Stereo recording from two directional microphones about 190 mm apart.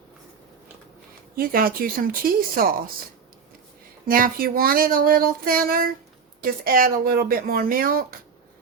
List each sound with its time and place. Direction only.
1.4 s speech: 50° right (ahead or behind)
4.1 s speech: 50° right (ahead or behind)